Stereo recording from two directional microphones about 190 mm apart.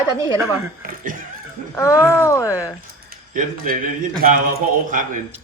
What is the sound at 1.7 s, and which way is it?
Speech, 15° left (ahead or behind).